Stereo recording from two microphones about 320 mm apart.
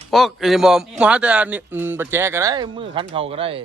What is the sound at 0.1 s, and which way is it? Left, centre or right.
A man's voice, centre.